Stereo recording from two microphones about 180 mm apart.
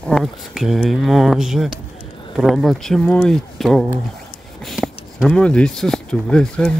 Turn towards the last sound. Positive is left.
turn(degrees=5)  # may be behind; listen again after turning